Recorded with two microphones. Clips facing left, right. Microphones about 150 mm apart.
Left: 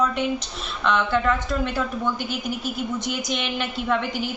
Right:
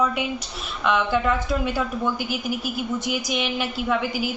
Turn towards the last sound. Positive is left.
turn(degrees=-5)  # may be behind; listen again after turning